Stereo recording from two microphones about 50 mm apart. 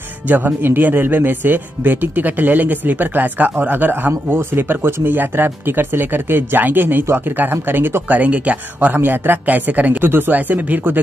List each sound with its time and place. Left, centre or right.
0.3 s speech: right
8.2 s speech: right
10.0 s speech: right